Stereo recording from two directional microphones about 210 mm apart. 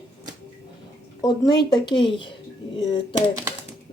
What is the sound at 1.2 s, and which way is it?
A woman's voice, 20° left (ahead or behind).